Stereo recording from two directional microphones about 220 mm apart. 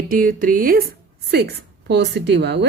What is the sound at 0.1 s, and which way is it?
Speech, 40° right (ahead or behind).